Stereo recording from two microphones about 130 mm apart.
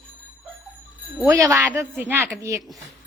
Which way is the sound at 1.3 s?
25° right (ahead or behind).